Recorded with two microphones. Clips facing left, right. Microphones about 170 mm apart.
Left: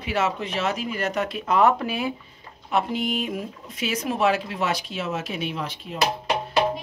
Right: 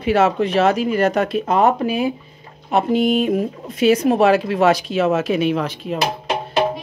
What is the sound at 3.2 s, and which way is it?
Speech, 55° right (ahead or behind).